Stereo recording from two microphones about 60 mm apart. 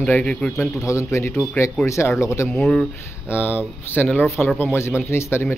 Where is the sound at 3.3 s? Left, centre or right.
Left.